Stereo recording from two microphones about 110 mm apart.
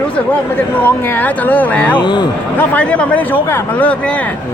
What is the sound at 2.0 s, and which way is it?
Speech, 40° left (ahead or behind).